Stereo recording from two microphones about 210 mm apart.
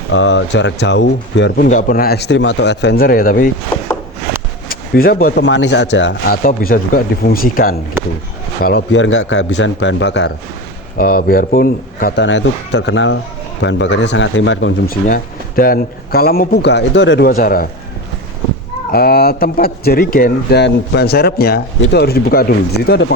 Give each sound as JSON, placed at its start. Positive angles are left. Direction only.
{"t": 0.1, "sound": "a man's voice", "side_deg": 60}
{"t": 1.6, "sound": "speech", "side_deg": 40}
{"t": 4.7, "sound": "speech", "side_deg": 45}
{"t": 8.6, "sound": "a man's voice", "side_deg": 55}
{"t": 10.9, "sound": "a man's voice", "side_deg": 45}
{"t": 15.0, "sound": "speech", "side_deg": 45}
{"t": 18.9, "sound": "speech", "side_deg": 45}